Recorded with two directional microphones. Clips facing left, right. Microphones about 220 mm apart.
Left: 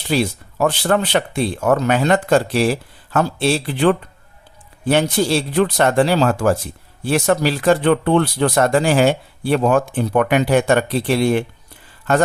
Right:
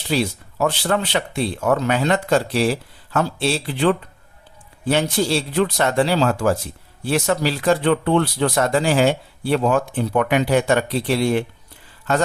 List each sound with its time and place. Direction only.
0.1 s speech: 50° left (ahead or behind)
5.2 s speech: 55° left (ahead or behind)